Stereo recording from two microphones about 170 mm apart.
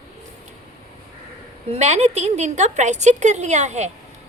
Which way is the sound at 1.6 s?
40° right (ahead or behind).